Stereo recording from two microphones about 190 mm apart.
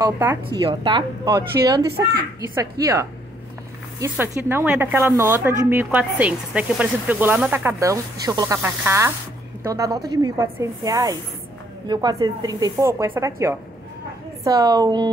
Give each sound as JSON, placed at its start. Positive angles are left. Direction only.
{"t": 0.0, "sound": "speech", "side_deg": -10}
{"t": 0.7, "sound": "speech", "side_deg": -25}